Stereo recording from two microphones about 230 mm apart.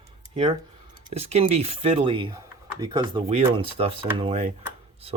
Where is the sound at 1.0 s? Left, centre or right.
Right.